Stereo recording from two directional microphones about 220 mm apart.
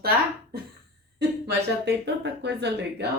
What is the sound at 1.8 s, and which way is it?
Speech, 50° right (ahead or behind).